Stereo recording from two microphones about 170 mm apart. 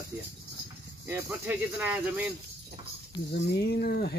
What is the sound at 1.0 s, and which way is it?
Speech, 15° right (ahead or behind).